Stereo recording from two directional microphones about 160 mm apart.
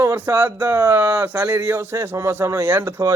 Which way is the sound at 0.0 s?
15° right (ahead or behind).